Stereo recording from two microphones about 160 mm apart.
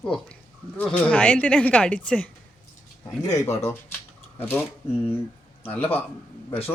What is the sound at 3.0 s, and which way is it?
Speech, 20° left (ahead or behind).